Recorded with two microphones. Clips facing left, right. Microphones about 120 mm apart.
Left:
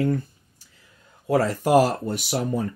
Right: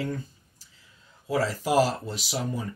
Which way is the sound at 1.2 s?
55° left (ahead or behind).